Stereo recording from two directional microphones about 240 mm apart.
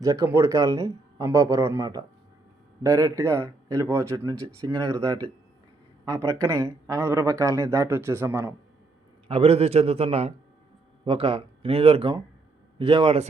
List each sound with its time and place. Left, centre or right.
0.0 s speech: centre
6.1 s speech: centre
9.2 s a man's voice: right